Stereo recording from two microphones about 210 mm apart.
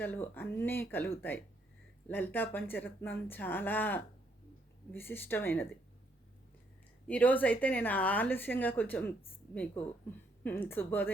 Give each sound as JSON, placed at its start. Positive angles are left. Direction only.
{"t": 0.0, "sound": "speech", "side_deg": 10}
{"t": 7.1, "sound": "speech", "side_deg": 10}
{"t": 10.4, "sound": "speech", "side_deg": 10}